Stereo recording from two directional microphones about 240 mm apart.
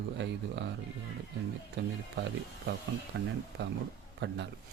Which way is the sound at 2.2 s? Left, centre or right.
Right.